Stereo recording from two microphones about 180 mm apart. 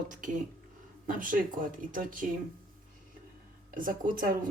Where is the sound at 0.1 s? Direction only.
50° right (ahead or behind).